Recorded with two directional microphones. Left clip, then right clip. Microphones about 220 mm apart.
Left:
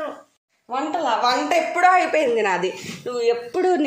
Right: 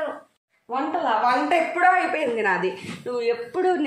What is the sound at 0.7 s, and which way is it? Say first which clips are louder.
A woman's voice: left 1 dB; 45° left (ahead or behind).